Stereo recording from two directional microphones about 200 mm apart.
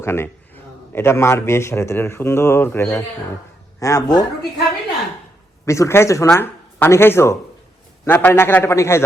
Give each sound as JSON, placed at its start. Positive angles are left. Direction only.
{"t": 0.0, "sound": "a man's voice", "side_deg": 10}
{"t": 5.6, "sound": "speech", "side_deg": 15}